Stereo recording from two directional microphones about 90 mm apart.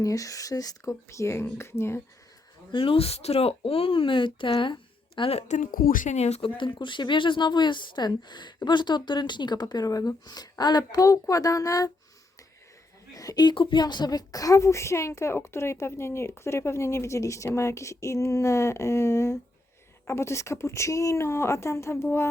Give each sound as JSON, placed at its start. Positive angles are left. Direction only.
{"t": 0.0, "sound": "a woman's voice", "side_deg": 40}
{"t": 2.7, "sound": "speech", "side_deg": 85}
{"t": 6.4, "sound": "speech", "side_deg": 65}
{"t": 13.1, "sound": "a woman's voice", "side_deg": 45}